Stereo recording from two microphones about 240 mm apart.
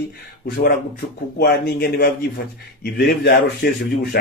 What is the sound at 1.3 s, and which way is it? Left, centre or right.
Speech, left.